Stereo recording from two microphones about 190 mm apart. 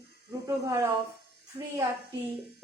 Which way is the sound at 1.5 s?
25° right (ahead or behind).